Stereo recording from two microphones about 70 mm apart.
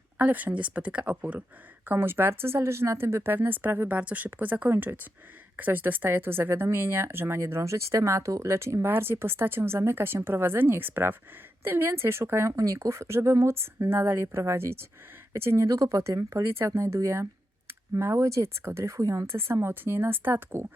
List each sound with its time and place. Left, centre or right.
0.2 s speech: right
1.9 s speech: right
12.5 s speech: right
15.6 s speech: right